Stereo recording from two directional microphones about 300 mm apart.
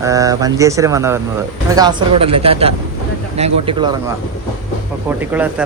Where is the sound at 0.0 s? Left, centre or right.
Centre.